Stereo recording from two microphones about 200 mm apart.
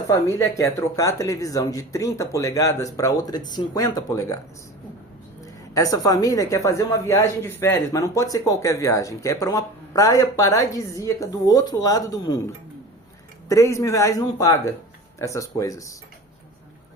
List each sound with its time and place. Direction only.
0.1 s a woman's voice: 15° left (ahead or behind)
5.7 s a woman's voice: 15° left (ahead or behind)
13.5 s a woman's voice: 15° left (ahead or behind)